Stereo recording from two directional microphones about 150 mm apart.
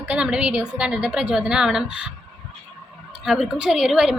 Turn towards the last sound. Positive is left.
turn(degrees=-5)  # may be behind; listen again after turning